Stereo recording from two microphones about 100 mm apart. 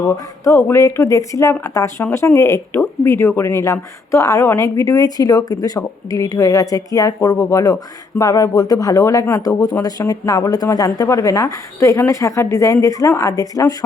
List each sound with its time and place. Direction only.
0.1 s speech: 30° left (ahead or behind)